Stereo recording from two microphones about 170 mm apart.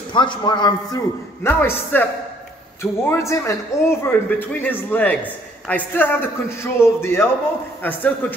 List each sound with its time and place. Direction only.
0.1 s a man's voice: 30° left (ahead or behind)
1.4 s a man's voice: 15° left (ahead or behind)